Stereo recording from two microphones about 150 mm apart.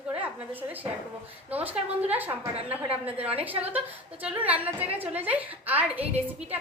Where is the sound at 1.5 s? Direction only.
10° right (ahead or behind).